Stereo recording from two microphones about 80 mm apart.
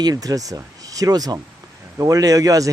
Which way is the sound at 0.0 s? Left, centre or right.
Right.